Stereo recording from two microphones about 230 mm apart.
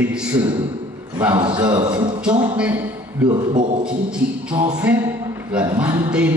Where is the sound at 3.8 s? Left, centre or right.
Centre.